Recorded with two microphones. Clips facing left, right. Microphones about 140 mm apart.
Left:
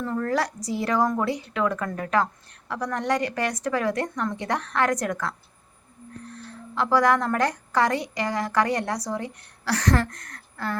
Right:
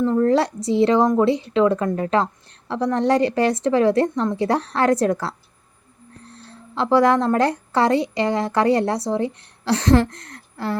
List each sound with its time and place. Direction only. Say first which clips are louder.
0.0 s a woman's voice: right 8 dB; 25° right (ahead or behind)